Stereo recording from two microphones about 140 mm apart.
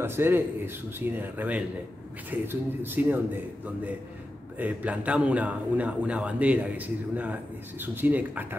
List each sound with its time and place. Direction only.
0.0 s a man's voice: 15° right (ahead or behind)
4.6 s a man's voice: 10° right (ahead or behind)